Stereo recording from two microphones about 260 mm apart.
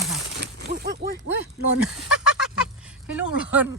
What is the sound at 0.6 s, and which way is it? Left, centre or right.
Speech, right.